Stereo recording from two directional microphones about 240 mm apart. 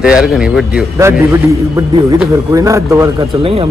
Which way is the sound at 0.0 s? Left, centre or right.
Centre.